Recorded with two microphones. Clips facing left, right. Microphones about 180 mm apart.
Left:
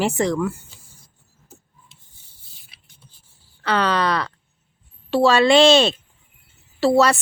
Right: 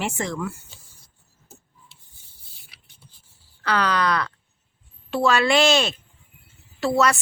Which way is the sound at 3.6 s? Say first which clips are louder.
Left 2 dB; 25° left (ahead or behind).